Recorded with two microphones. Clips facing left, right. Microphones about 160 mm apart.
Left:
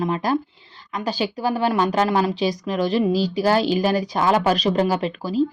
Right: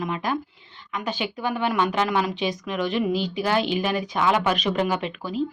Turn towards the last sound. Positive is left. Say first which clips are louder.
# left 5 dB
turn(degrees=35)  # may be behind; listen again after turning